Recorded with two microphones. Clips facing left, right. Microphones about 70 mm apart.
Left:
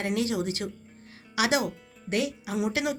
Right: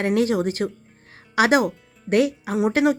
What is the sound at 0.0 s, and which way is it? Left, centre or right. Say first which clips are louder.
A woman's voice: right 8 dB; right.